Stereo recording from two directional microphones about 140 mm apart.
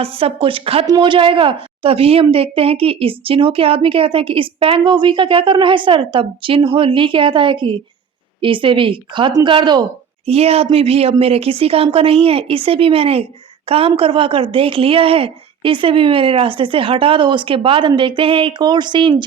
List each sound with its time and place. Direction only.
0.0 s a woman's voice: 45° right (ahead or behind)
10.2 s a woman's voice: 45° right (ahead or behind)